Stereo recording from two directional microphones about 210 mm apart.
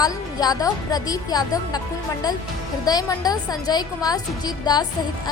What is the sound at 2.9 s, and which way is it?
A woman's voice, 20° left (ahead or behind).